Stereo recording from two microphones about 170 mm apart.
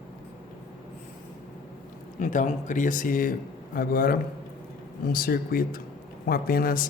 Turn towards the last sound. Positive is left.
turn(degrees=60)  # may be behind; listen again after turning